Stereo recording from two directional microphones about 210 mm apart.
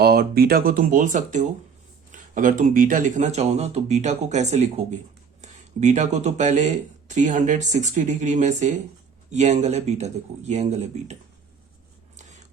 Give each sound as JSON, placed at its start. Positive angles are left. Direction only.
{"t": 0.0, "sound": "speech", "side_deg": -45}